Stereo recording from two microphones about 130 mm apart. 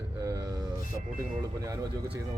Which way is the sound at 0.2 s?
30° right (ahead or behind).